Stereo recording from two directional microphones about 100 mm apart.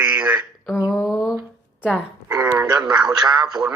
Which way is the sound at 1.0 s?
5° right (ahead or behind).